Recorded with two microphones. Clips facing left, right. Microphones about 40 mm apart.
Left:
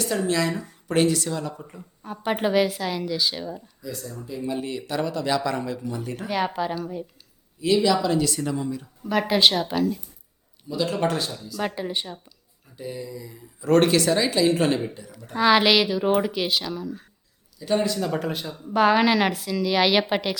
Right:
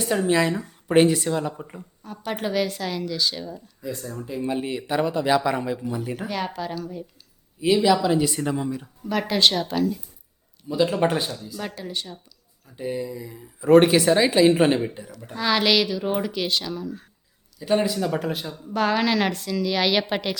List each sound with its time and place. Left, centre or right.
0.0 s speech: right
2.0 s a woman's voice: centre
3.8 s speech: right; by 6.0 s centre
6.2 s a woman's voice: centre
7.6 s speech: centre
9.0 s speech: centre
10.7 s speech: right
11.5 s speech: left
12.7 s speech: right
15.4 s a woman's voice: centre
17.6 s speech: centre
18.6 s a woman's voice: centre